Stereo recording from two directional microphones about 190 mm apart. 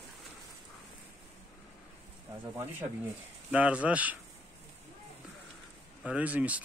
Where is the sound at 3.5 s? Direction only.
5° right (ahead or behind).